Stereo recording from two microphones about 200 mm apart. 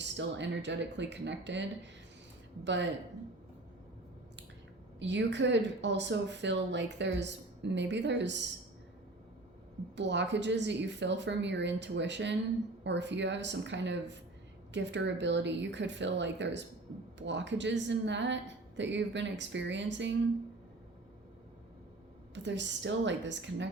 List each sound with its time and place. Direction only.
0.0 s a woman's voice: 60° right (ahead or behind)
2.6 s a woman's voice: 60° right (ahead or behind)
4.9 s a woman's voice: 60° right (ahead or behind)
9.9 s a woman's voice: 60° right (ahead or behind)
22.4 s a woman's voice: 65° right (ahead or behind)